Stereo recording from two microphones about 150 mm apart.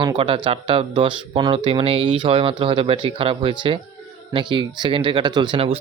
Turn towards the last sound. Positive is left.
turn(degrees=-35)  # may be behind; listen again after turning